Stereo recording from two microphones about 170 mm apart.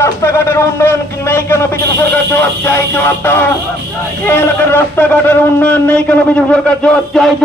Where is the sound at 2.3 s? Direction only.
15° left (ahead or behind).